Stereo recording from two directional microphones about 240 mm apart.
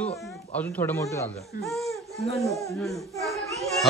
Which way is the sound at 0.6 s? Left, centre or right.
Centre.